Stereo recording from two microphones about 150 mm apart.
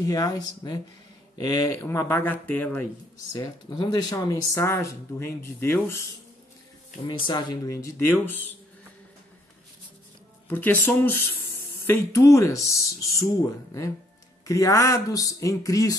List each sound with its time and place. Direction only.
0.0 s speech: 25° left (ahead or behind)
3.3 s speech: 30° left (ahead or behind)
7.2 s speech: 25° left (ahead or behind)
10.5 s speech: 10° left (ahead or behind)
14.4 s speech: 20° left (ahead or behind)